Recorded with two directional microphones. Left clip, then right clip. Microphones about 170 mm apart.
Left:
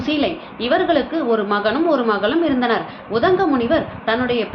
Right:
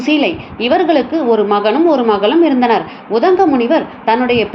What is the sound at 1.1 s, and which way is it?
Speech, centre (ahead or behind).